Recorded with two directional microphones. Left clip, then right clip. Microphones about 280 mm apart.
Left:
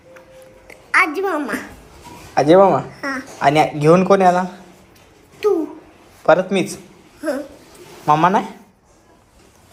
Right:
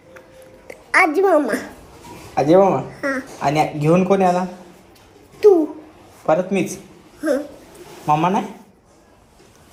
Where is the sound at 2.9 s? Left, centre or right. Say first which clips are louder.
Right 2 dB; centre.